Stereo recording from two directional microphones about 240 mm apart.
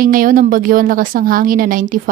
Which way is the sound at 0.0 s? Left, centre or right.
Right.